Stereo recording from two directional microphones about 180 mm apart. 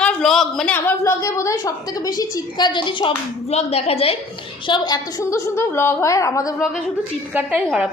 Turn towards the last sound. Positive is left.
turn(degrees=-5)  # may be behind; listen again after turning